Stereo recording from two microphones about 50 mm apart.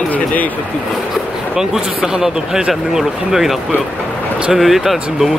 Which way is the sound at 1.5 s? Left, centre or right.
Centre.